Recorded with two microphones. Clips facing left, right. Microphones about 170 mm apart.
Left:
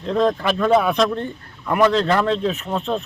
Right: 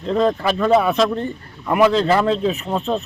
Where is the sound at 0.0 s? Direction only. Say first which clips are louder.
Right 1 dB; centre (ahead or behind).